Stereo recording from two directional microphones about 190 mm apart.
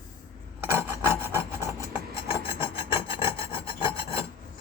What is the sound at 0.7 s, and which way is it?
Filing, 15° right (ahead or behind).